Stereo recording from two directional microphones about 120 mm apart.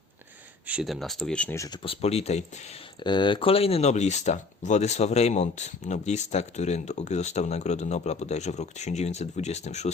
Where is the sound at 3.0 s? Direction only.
40° left (ahead or behind).